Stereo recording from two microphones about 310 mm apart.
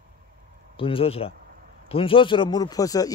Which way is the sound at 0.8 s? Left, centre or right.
Centre.